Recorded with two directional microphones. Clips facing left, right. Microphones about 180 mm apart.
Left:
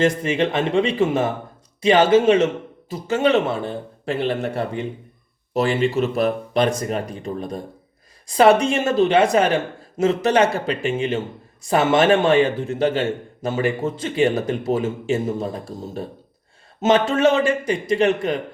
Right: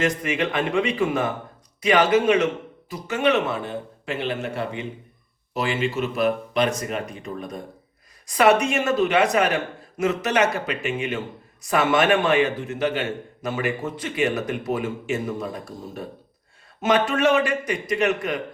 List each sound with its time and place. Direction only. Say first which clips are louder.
0.0 s a man's voice: left 4 dB; 30° left (ahead or behind)